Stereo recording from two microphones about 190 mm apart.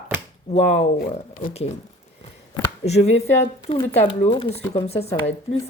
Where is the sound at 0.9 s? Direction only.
45° left (ahead or behind).